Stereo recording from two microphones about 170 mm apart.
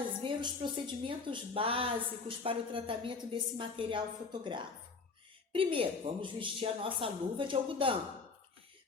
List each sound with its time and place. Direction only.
0.2 s a woman's voice: 30° right (ahead or behind)